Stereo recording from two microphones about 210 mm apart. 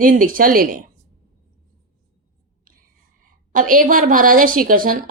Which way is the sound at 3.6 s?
40° right (ahead or behind).